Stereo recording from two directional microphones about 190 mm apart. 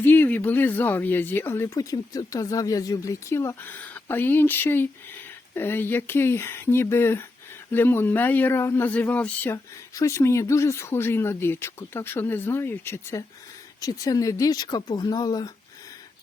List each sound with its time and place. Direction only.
0.0 s speech: 10° left (ahead or behind)